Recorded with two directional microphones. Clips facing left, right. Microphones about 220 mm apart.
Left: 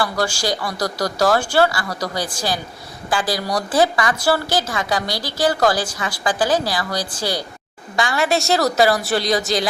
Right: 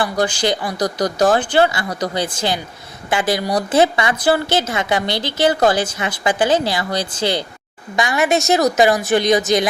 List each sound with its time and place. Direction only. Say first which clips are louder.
0.0 s a woman's voice: right 3 dB; 20° right (ahead or behind)